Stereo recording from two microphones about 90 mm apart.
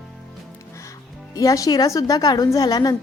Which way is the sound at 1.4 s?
40° left (ahead or behind).